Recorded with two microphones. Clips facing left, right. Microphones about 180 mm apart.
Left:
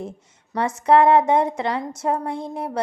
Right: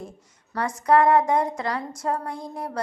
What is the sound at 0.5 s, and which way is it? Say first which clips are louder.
A woman's voice: left 3 dB; 25° left (ahead or behind).